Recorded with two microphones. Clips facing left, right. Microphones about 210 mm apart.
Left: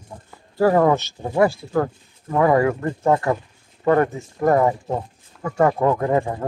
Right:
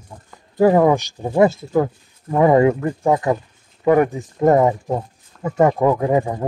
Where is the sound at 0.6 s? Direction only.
15° right (ahead or behind).